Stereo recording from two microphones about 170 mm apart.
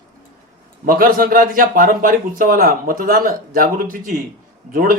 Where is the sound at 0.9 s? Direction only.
60° right (ahead or behind).